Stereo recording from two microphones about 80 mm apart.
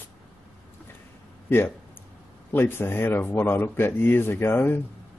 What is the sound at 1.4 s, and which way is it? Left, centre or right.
Speech, left.